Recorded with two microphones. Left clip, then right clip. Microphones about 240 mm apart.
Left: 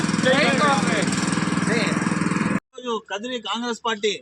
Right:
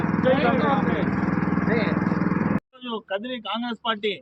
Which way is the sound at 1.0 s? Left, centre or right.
Left.